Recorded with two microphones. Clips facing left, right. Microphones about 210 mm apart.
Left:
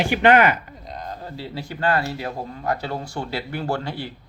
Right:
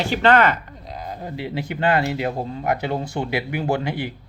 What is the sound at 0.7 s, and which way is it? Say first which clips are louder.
Speech: right 1 dB; centre (ahead or behind).